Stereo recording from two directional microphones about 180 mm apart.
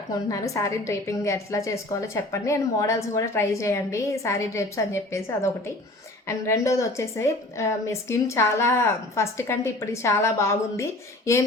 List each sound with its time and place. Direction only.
0.1 s a woman's voice: 20° left (ahead or behind)